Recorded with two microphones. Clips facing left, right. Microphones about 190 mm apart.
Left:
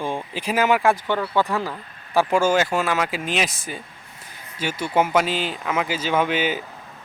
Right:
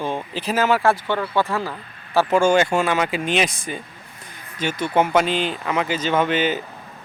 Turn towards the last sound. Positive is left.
turn(degrees=10)  # may be behind; listen again after turning